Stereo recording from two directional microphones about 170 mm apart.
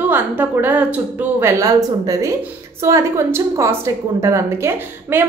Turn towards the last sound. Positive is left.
turn(degrees=-15)  # may be behind; listen again after turning